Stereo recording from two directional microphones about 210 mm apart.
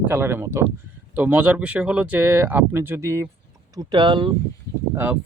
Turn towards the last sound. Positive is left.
turn(degrees=-10)  # may be behind; listen again after turning